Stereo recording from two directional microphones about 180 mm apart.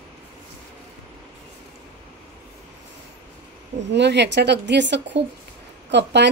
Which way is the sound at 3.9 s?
70° right (ahead or behind).